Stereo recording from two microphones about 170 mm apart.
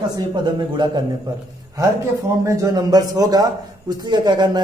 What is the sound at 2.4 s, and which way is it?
A man's voice, 20° right (ahead or behind).